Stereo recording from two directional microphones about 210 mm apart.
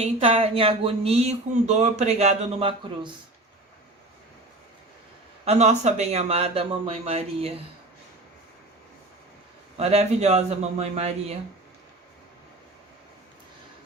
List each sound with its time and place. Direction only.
0.0 s speech: 25° right (ahead or behind)
5.5 s speech: 30° right (ahead or behind)
9.7 s a man's voice: 30° right (ahead or behind)